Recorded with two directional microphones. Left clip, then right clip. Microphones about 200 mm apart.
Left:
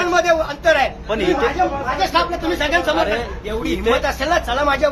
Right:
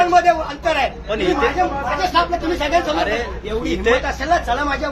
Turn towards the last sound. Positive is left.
turn(degrees=25)  # may be behind; listen again after turning